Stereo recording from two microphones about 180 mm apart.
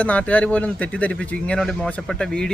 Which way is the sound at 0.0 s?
5° left (ahead or behind).